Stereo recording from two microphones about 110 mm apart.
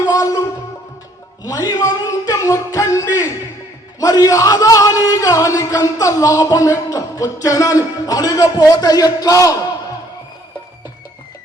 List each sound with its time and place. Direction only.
0.0 s music: 30° left (ahead or behind)
1.5 s a sound: 35° left (ahead or behind)
4.0 s music: 30° left (ahead or behind)